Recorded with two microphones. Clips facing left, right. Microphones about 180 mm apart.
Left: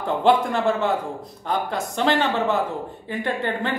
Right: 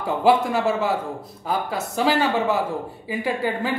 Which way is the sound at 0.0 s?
5° right (ahead or behind).